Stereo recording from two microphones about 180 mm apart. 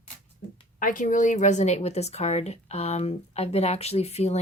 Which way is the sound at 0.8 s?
50° left (ahead or behind).